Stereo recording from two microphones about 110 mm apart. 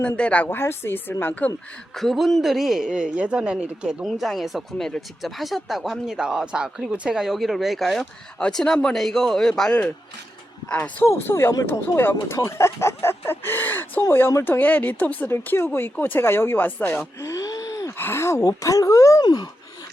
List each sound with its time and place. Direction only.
0.2 s speech: 10° left (ahead or behind)
2.0 s speech: centre (ahead or behind)
17.2 s gasp: 30° left (ahead or behind)
17.9 s speech: 20° left (ahead or behind)
19.2 s speech: 40° left (ahead or behind)